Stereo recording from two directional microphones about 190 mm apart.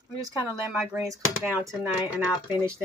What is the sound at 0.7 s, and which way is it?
Speech, centre (ahead or behind).